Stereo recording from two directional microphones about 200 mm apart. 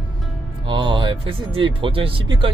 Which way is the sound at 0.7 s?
25° right (ahead or behind).